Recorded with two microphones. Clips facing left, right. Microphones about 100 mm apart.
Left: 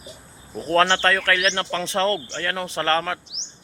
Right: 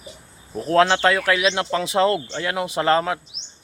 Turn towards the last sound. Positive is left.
turn(degrees=-10)  # may be behind; listen again after turning